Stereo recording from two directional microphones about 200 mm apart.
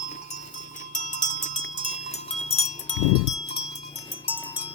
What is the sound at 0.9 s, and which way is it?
Cowbell, 40° left (ahead or behind).